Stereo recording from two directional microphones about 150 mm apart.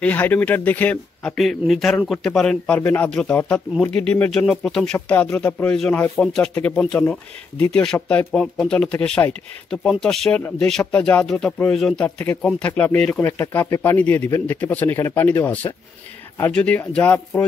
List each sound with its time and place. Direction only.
0.0 s speech: 10° left (ahead or behind)